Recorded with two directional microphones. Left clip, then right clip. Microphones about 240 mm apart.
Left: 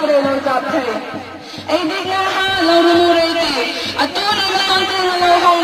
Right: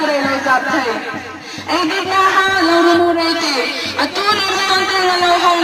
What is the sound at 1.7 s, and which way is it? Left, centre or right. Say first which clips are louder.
Music: right 1 dB; left.